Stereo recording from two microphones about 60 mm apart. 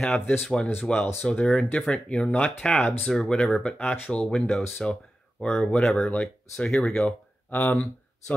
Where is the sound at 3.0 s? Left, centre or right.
Centre.